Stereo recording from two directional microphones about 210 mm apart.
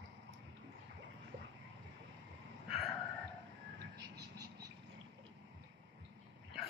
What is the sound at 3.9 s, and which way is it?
Frog, 55° right (ahead or behind).